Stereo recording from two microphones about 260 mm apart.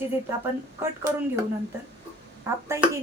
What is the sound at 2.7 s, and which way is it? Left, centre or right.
Speech, centre.